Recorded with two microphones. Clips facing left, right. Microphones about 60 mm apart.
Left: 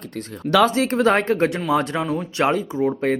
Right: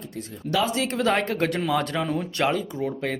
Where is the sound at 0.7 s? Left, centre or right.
Left.